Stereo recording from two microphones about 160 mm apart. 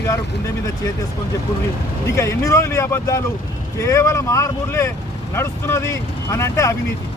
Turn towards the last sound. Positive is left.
turn(degrees=20)  # may be behind; listen again after turning